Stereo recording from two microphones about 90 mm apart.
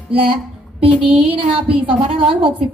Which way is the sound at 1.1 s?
10° right (ahead or behind).